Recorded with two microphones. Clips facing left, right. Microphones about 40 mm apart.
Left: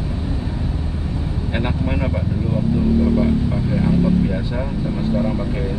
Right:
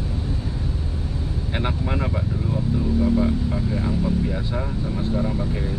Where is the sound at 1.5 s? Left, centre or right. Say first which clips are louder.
Left 3 dB; centre.